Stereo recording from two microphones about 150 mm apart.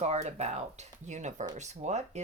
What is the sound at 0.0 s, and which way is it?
Speech, 45° right (ahead or behind).